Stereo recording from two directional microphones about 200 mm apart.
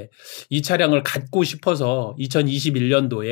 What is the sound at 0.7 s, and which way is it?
Speech, 50° left (ahead or behind).